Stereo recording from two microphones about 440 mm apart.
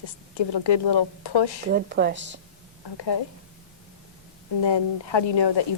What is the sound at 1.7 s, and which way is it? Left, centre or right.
Speech, right.